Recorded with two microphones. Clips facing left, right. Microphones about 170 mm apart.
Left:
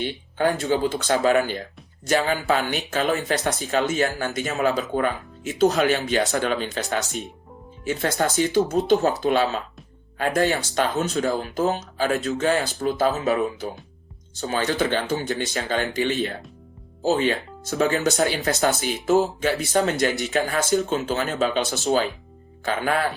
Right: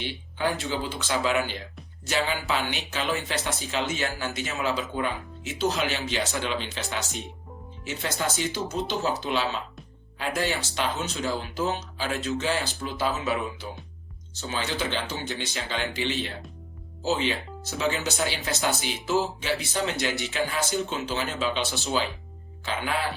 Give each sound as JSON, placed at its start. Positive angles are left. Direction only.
{"t": 0.0, "sound": "speech", "side_deg": 50}
{"t": 7.9, "sound": "speech", "side_deg": 50}